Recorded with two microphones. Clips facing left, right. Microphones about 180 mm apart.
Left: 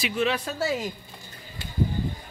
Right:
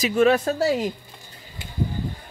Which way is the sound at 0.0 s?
45° right (ahead or behind).